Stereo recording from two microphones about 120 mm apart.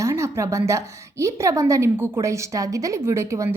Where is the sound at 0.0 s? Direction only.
25° right (ahead or behind).